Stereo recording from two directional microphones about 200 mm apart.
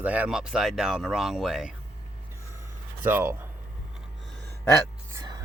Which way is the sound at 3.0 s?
10° right (ahead or behind).